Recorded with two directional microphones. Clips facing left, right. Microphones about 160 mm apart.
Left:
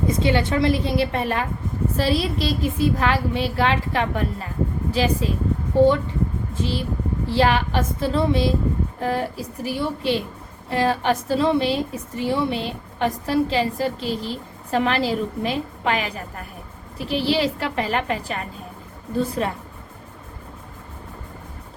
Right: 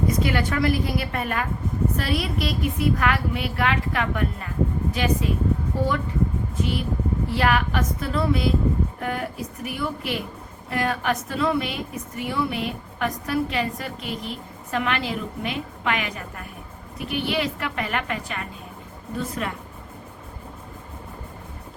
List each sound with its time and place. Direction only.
0.1 s a woman's voice: 25° left (ahead or behind)